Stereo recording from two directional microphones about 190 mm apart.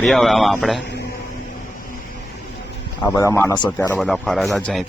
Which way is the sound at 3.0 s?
15° left (ahead or behind).